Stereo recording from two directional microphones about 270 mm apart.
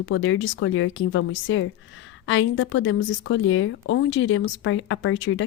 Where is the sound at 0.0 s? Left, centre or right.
Left.